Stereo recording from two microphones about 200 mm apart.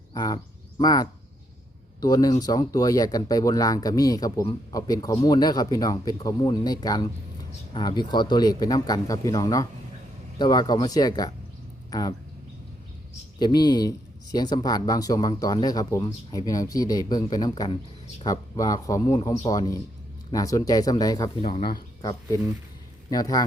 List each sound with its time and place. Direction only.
0.1 s speech: 20° left (ahead or behind)
13.4 s speech: 20° left (ahead or behind)
23.0 s speech: 20° left (ahead or behind)